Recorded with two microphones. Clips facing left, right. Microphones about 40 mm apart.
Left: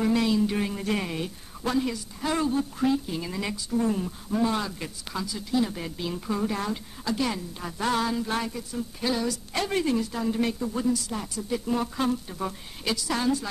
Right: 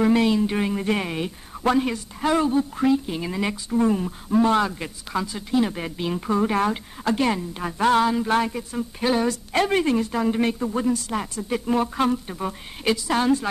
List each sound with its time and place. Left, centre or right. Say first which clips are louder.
0.0 s speech: right 4 dB; right
1.6 s speech: right 6 dB; right
4.4 s speech: right 7 dB; right
4.6 s speech: right 5 dB; right
12.4 s speech: right 3 dB; right